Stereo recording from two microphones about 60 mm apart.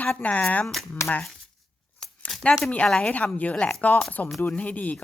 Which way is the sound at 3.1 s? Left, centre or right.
Left.